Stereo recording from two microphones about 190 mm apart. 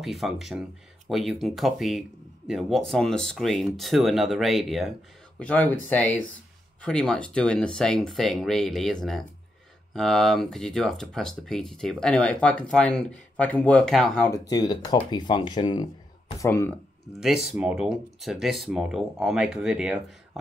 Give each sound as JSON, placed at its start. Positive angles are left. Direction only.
{"t": 0.0, "sound": "speech", "side_deg": 0}
{"t": 14.5, "sound": "speech", "side_deg": 20}
{"t": 17.2, "sound": "speech", "side_deg": 0}